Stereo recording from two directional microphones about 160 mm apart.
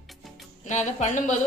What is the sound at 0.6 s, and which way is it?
Speech, 50° left (ahead or behind).